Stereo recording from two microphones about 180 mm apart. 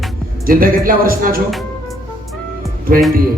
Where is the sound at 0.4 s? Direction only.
50° right (ahead or behind).